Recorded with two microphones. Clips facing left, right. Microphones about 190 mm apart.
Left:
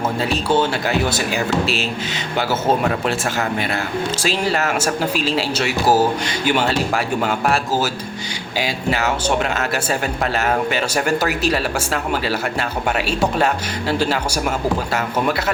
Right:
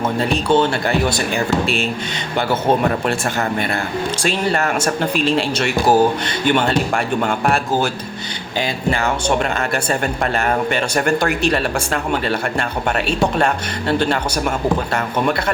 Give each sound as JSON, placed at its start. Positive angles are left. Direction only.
{"t": 0.4, "sound": "speech", "side_deg": 5}
{"t": 4.4, "sound": "speech", "side_deg": 5}
{"t": 10.4, "sound": "speech", "side_deg": 5}
{"t": 13.1, "sound": "speech", "side_deg": 5}